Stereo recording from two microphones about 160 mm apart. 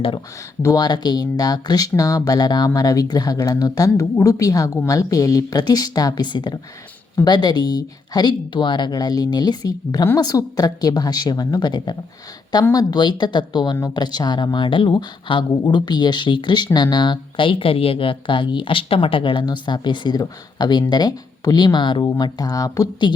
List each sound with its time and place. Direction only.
0.6 s speech: 25° left (ahead or behind)